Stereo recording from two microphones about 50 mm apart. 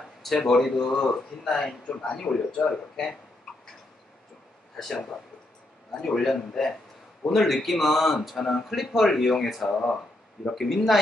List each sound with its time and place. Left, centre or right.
0.2 s speech: centre
1.5 s speech: centre
5.9 s speech: centre